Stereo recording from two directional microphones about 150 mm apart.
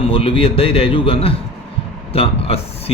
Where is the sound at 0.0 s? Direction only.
35° left (ahead or behind).